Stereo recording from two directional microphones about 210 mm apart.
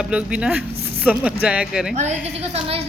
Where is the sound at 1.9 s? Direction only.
35° right (ahead or behind).